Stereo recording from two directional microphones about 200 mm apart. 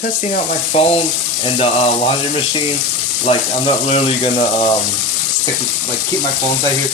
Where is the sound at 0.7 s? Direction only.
30° left (ahead or behind).